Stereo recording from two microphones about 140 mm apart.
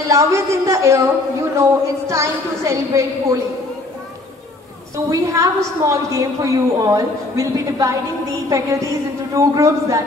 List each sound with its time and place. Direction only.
0.1 s a woman's voice: 20° right (ahead or behind)
4.9 s a woman's voice: 25° right (ahead or behind)